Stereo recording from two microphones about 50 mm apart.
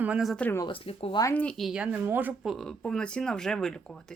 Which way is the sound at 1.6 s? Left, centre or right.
Centre.